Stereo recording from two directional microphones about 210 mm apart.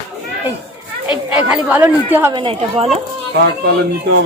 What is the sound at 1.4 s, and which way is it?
Speech, 5° right (ahead or behind).